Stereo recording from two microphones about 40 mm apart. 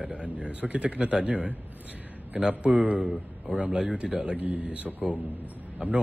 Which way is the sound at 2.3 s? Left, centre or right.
Right.